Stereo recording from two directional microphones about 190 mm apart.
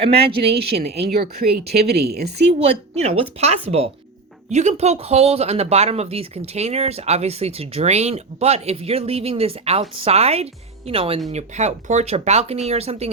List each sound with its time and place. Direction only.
0.3 s speech: 55° right (ahead or behind)
2.6 s speech: 35° right (ahead or behind)